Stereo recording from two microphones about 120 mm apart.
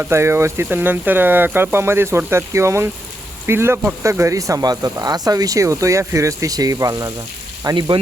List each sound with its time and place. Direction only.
0.0 s speech: 20° right (ahead or behind)